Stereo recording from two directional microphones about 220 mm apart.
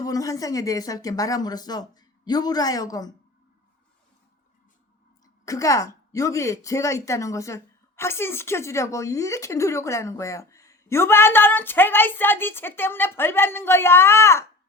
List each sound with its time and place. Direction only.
0.0 s speech: 15° left (ahead or behind)
5.5 s speech: 15° left (ahead or behind)